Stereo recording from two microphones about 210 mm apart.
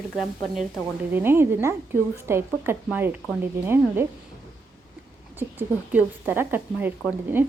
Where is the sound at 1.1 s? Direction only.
10° right (ahead or behind).